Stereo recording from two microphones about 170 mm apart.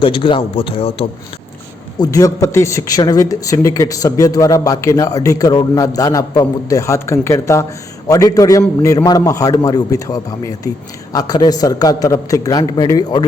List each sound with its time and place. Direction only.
0.0 s a man's voice: 30° left (ahead or behind)
2.0 s speech: 20° left (ahead or behind)